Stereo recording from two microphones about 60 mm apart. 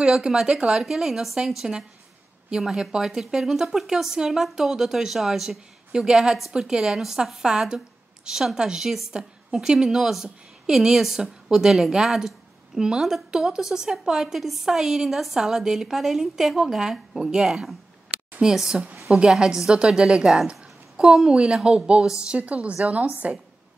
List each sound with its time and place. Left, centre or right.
0.0 s a woman's voice: centre